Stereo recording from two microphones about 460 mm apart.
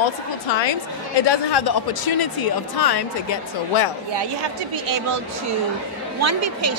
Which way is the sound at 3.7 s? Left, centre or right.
Left.